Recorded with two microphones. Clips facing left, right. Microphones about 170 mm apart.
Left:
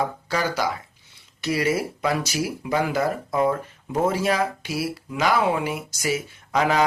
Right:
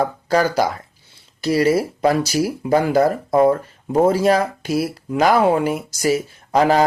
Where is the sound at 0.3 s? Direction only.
40° right (ahead or behind).